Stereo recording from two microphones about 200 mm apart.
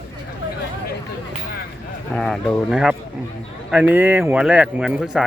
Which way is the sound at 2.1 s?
Centre (ahead or behind).